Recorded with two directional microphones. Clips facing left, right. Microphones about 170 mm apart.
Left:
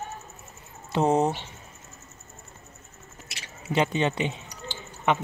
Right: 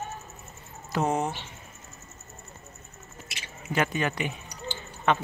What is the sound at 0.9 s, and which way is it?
Speech, 30° left (ahead or behind).